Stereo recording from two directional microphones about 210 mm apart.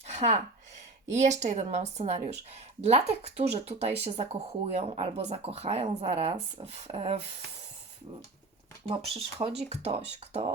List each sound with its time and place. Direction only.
0.1 s speech: 35° right (ahead or behind)
8.9 s speech: 25° right (ahead or behind)